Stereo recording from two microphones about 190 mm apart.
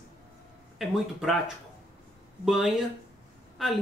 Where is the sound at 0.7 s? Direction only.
Centre (ahead or behind).